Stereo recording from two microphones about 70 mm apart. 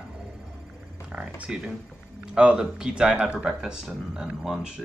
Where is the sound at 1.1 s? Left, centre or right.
Centre.